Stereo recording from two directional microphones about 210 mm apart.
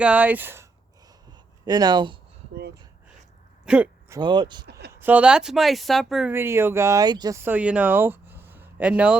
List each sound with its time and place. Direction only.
0.0 s speech: 5° right (ahead or behind)
2.6 s speech: 50° right (ahead or behind)
3.7 s a sound: 5° right (ahead or behind)
4.2 s speech: 20° right (ahead or behind)
4.6 s speech: 50° right (ahead or behind)
4.9 s speech: 10° right (ahead or behind)